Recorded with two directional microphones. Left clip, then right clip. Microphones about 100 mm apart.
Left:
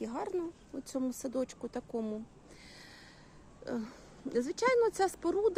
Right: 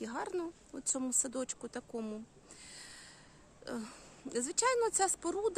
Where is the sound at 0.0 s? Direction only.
15° right (ahead or behind).